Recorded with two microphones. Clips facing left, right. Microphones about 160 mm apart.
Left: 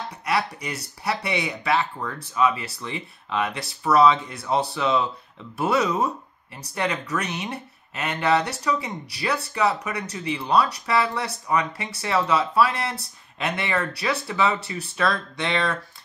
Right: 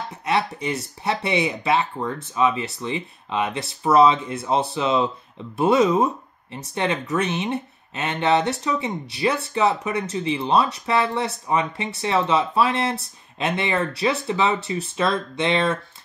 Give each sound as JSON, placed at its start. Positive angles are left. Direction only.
{"t": 0.2, "sound": "speech", "side_deg": -25}